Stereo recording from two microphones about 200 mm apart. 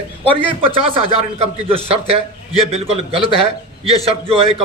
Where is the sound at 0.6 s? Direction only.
25° right (ahead or behind).